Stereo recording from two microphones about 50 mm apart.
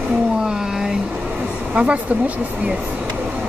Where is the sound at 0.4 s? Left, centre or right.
Centre.